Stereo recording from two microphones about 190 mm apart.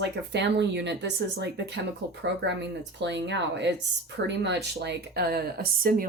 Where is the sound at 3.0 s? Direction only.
65° right (ahead or behind).